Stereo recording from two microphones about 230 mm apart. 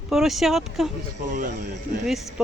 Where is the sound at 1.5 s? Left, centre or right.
Right.